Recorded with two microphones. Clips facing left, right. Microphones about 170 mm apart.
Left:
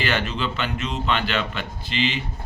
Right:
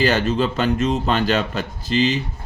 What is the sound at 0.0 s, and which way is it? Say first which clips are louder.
Speech: right 7 dB; 40° right (ahead or behind).